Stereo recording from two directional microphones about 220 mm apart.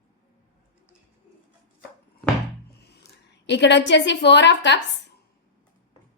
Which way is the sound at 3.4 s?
55° left (ahead or behind).